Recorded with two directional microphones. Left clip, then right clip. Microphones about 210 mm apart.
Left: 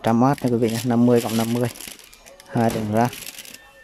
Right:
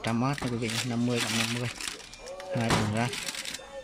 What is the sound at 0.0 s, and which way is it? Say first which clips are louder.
Speech: left 11 dB; 25° left (ahead or behind).